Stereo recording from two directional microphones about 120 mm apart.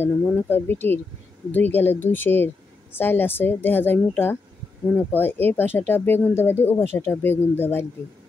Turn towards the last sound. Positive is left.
turn(degrees=15)  # may be behind; listen again after turning